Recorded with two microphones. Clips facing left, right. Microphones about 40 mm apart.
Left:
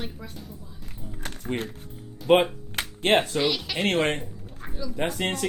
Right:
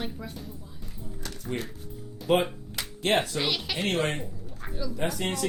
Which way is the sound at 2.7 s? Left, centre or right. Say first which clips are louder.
Left 4 dB; left.